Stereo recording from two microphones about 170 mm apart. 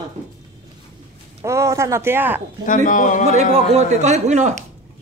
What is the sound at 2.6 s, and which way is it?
Speech, 50° left (ahead or behind).